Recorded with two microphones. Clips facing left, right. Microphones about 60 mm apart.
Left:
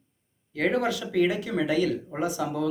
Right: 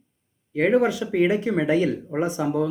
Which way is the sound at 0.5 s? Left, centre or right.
Centre.